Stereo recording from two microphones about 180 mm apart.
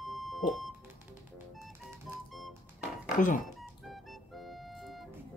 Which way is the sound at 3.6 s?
Centre (ahead or behind).